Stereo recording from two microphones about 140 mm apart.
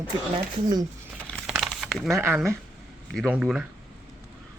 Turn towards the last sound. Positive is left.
turn(degrees=-5)  # may be behind; listen again after turning